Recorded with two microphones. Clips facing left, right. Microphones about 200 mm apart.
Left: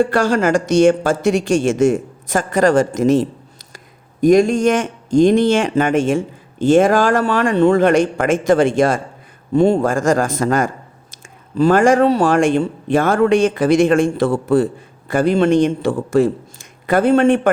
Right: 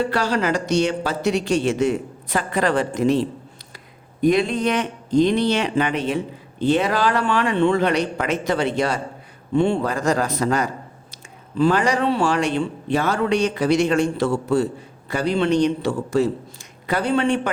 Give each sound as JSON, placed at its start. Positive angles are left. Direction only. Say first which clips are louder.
{"t": 0.0, "sound": "a man's voice", "louder": "left 6 dB", "side_deg": 50}